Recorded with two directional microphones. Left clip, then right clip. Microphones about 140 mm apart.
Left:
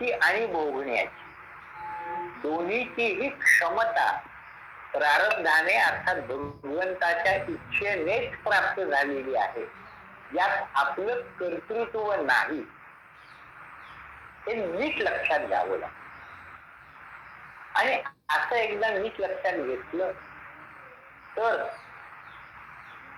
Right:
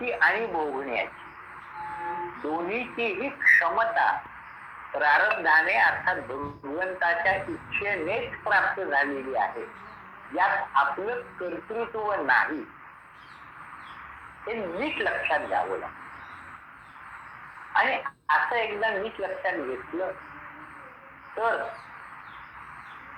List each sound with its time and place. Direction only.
0.0 s speech: 30° left (ahead or behind)
14.4 s speech: 30° left (ahead or behind)
17.7 s speech: 30° left (ahead or behind)
21.3 s speech: 30° left (ahead or behind)